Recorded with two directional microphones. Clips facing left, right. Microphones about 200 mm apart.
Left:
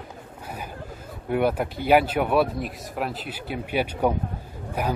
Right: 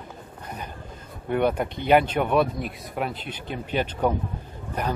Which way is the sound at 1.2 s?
5° left (ahead or behind).